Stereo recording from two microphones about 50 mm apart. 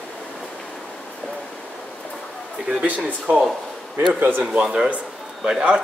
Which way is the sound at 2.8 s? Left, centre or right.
Right.